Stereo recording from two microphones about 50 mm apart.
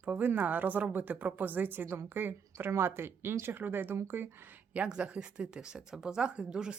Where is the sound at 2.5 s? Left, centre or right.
Right.